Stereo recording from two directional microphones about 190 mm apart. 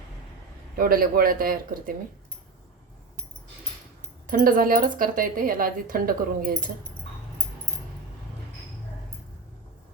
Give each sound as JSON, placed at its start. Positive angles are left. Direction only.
{"t": 0.8, "sound": "speech", "side_deg": -50}
{"t": 4.3, "sound": "speech", "side_deg": -45}